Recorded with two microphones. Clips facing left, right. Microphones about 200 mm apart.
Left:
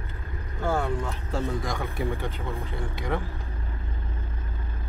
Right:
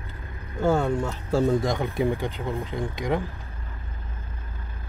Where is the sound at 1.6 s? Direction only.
20° right (ahead or behind).